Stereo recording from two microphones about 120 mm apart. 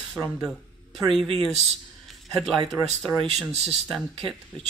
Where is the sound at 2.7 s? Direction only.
Centre (ahead or behind).